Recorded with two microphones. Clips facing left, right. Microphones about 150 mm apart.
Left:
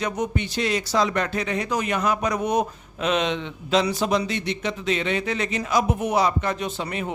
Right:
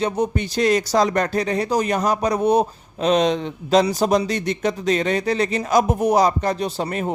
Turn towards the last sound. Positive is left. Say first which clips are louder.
# right 5 dB
turn(degrees=-40)  # may be behind; listen again after turning